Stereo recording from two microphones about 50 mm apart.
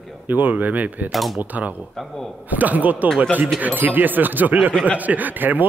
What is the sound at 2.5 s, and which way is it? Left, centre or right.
Speech, right.